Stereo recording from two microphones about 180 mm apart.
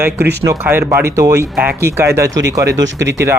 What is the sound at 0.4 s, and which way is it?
Speech, 15° right (ahead or behind).